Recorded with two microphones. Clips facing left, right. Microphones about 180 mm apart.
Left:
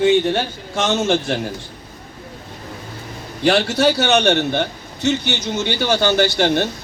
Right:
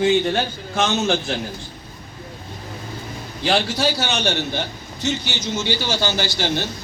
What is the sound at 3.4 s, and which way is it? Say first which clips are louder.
A man's voice: left 5 dB; 60° left (ahead or behind).